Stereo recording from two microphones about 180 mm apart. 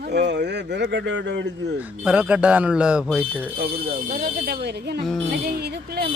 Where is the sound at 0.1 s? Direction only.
70° right (ahead or behind).